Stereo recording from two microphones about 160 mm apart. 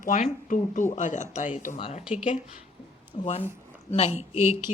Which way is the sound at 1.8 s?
35° left (ahead or behind).